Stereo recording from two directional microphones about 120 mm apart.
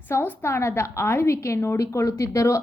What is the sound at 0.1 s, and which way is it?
A woman's voice, 20° left (ahead or behind).